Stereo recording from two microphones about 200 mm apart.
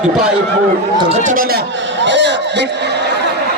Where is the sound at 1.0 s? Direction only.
30° right (ahead or behind).